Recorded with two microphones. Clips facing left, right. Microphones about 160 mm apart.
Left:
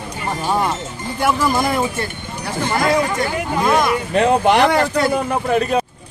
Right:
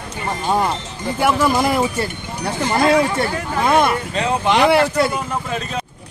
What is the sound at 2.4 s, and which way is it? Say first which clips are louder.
Speech: right 2 dB; 30° right (ahead or behind).